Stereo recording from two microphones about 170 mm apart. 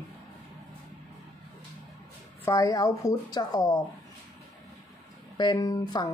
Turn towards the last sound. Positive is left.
turn(degrees=25)  # may be behind; listen again after turning